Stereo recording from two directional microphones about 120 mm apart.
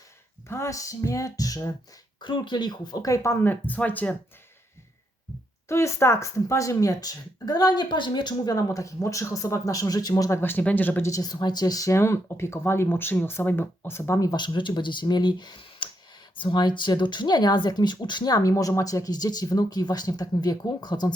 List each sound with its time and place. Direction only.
0.4 s speech: 25° left (ahead or behind)
2.2 s speech: 40° left (ahead or behind); by 4.1 s 15° left (ahead or behind)
5.6 s speech: 20° left (ahead or behind)
11.1 s speech: 35° left (ahead or behind)